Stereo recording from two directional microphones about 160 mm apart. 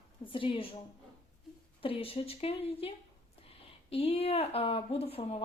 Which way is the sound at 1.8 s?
35° left (ahead or behind).